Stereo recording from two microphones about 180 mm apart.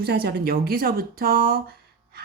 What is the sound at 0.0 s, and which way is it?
Speech, 60° right (ahead or behind).